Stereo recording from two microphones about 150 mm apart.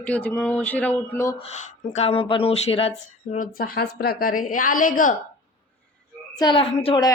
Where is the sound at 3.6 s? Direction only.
85° left; by 5.1 s 65° left (ahead or behind).